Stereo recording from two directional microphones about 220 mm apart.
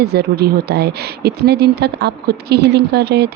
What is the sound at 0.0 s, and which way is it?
Speech, 45° right (ahead or behind).